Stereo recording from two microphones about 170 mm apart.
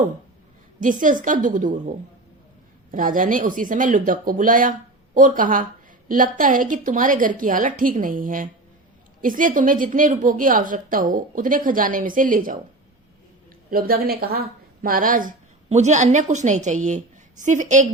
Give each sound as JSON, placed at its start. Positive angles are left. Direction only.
{"t": 0.8, "sound": "a woman's voice", "side_deg": -50}
{"t": 2.9, "sound": "a woman's voice", "side_deg": -50}
{"t": 13.7, "sound": "a woman's voice", "side_deg": -60}